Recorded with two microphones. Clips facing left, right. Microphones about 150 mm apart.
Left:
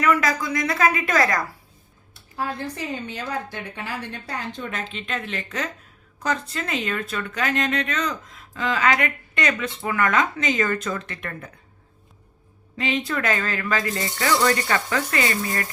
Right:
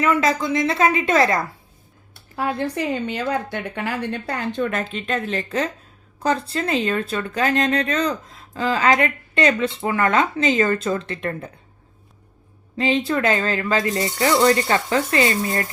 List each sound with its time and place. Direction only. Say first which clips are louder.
0.0 s speech: right 2 dB; 25° right (ahead or behind)
2.3 s a woman's voice: right 5 dB; 70° right (ahead or behind); by 11.5 s 30° right (ahead or behind)
12.7 s speech: right 5 dB; 30° right (ahead or behind)